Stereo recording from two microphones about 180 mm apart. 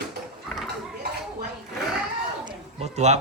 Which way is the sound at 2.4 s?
35° right (ahead or behind).